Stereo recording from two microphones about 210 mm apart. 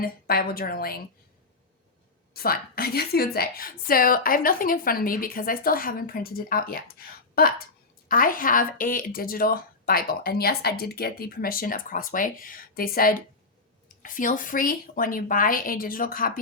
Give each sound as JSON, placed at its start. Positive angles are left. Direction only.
{"t": 0.0, "sound": "speech", "side_deg": 45}
{"t": 2.3, "sound": "speech", "side_deg": 45}